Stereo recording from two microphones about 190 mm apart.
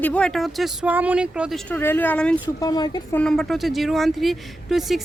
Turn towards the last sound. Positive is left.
turn(degrees=0)  # may be behind; listen again after turning